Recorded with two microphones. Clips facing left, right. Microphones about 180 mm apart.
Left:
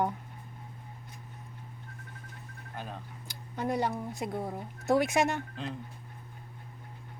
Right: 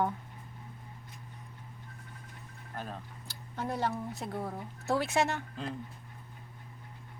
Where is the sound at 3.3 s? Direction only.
15° left (ahead or behind).